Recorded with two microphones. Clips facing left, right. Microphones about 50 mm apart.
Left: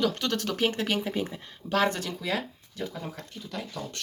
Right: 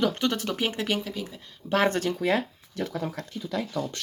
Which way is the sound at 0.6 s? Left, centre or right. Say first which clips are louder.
Left 2 dB; centre.